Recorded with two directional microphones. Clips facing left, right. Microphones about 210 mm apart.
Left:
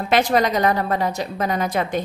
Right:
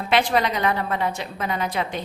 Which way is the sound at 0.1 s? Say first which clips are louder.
Left 3 dB; 45° left (ahead or behind).